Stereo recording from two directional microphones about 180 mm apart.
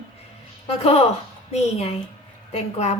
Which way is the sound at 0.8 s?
35° left (ahead or behind).